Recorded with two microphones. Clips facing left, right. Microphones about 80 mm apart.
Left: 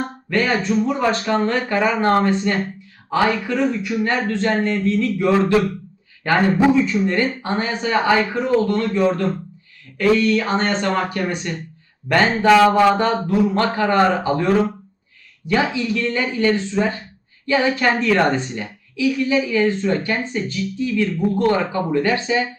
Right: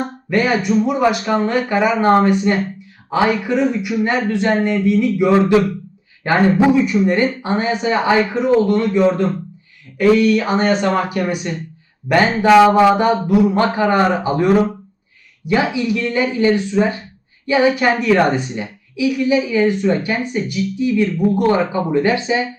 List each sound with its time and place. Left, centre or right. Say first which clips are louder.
0.3 s a woman's voice: right 3 dB; centre